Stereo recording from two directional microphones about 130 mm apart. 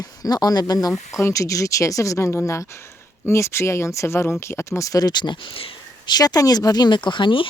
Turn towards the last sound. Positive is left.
turn(degrees=40)  # may be behind; listen again after turning